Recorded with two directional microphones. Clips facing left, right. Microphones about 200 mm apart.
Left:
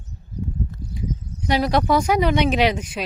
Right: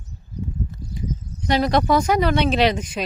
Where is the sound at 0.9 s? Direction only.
10° left (ahead or behind).